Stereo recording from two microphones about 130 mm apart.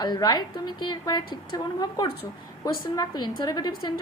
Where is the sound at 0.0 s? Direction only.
30° left (ahead or behind).